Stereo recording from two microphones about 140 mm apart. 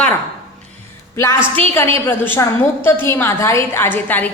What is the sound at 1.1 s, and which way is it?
A woman's voice, 20° left (ahead or behind).